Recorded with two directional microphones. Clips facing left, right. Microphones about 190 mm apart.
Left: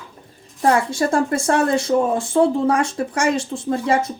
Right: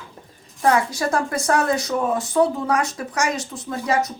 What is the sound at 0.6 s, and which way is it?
Speech, 30° left (ahead or behind).